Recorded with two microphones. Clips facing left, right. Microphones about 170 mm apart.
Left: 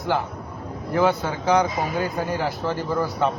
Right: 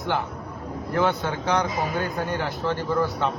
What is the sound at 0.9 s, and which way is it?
A man's voice, centre (ahead or behind).